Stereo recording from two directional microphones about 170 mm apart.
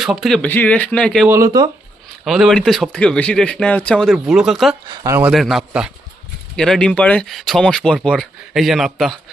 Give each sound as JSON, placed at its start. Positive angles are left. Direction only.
{"t": 0.0, "sound": "speech", "side_deg": 0}
{"t": 1.3, "sound": "speech", "side_deg": -20}
{"t": 2.2, "sound": "speech", "side_deg": 0}
{"t": 4.9, "sound": "speech", "side_deg": -15}
{"t": 5.3, "sound": "speech", "side_deg": 0}